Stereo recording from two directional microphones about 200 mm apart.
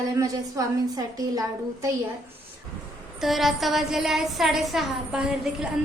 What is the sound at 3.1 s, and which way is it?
A woman's voice, centre (ahead or behind).